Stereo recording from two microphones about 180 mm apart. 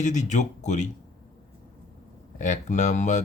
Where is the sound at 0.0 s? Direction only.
40° left (ahead or behind).